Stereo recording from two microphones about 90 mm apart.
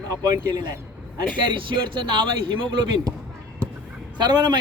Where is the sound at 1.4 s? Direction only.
65° right (ahead or behind).